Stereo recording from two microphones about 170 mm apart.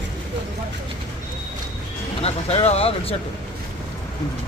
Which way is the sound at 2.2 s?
35° left (ahead or behind).